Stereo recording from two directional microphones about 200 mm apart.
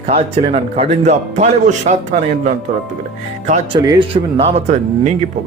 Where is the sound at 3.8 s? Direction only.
25° right (ahead or behind).